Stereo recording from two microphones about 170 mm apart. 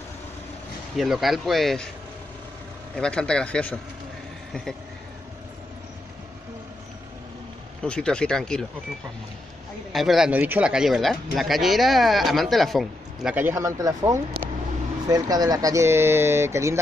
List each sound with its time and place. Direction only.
0.9 s speech: centre (ahead or behind)
3.0 s speech: 5° left (ahead or behind)
4.5 s vehicle: 5° left (ahead or behind)
7.8 s speech: 5° left (ahead or behind)
9.9 s speech: centre (ahead or behind)